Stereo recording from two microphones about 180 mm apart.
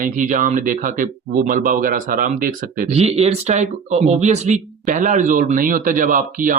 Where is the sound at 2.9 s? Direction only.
35° right (ahead or behind).